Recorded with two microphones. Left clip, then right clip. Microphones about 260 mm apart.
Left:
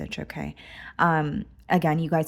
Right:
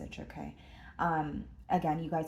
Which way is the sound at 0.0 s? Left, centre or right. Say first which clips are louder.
Left 10 dB; left.